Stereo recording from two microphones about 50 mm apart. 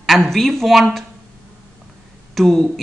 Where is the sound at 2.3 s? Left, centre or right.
Centre.